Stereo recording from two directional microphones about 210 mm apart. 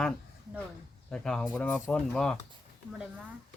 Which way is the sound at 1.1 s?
5° left (ahead or behind).